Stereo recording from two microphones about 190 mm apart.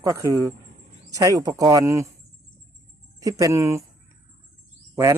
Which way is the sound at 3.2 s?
15° right (ahead or behind).